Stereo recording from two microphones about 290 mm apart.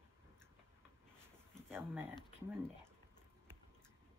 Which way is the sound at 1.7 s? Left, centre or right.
Centre.